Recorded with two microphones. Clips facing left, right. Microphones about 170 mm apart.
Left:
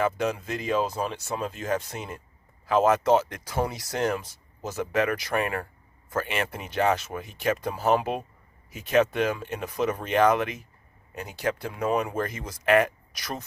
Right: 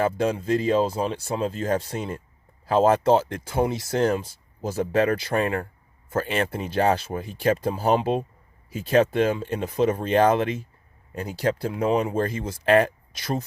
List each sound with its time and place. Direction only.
0.0 s speech: 30° right (ahead or behind)